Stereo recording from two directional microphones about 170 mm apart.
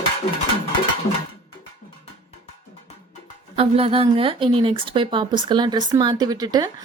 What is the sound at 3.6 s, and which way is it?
Speech, 35° right (ahead or behind).